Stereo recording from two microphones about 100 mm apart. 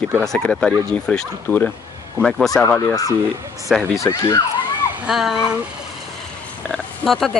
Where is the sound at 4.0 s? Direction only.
30° left (ahead or behind).